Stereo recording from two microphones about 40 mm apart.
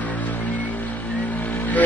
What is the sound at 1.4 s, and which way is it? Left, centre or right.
Vehicle, left.